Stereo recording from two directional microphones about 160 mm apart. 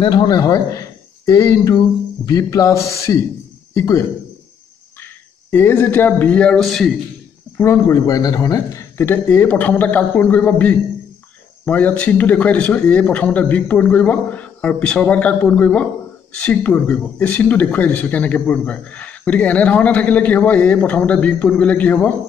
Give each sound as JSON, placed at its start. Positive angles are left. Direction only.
{"t": 0.0, "sound": "a man's voice", "side_deg": 30}
{"t": 5.0, "sound": "speech", "side_deg": 15}
{"t": 7.5, "sound": "speech", "side_deg": 15}